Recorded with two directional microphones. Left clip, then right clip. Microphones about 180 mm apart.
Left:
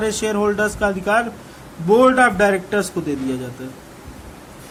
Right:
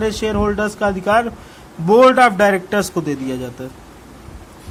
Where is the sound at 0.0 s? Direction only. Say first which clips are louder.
Right 1 dB; 25° right (ahead or behind).